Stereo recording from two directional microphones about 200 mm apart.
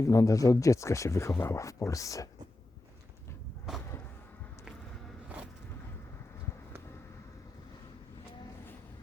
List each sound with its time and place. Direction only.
0.1 s speech: 15° left (ahead or behind)